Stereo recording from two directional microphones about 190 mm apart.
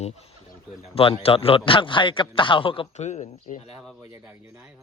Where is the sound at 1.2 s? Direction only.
30° left (ahead or behind).